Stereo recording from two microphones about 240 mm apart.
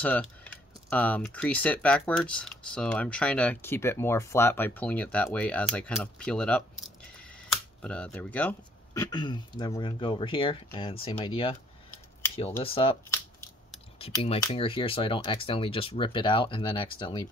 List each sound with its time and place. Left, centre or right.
0.0 s speech: centre
7.8 s speech: centre
9.1 s speech: centre
12.6 s speech: left
13.9 s speech: left